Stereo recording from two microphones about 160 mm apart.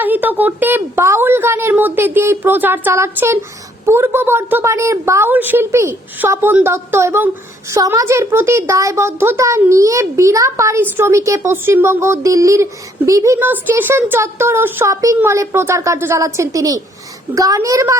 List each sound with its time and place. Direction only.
0.0 s a woman's voice: 10° right (ahead or behind)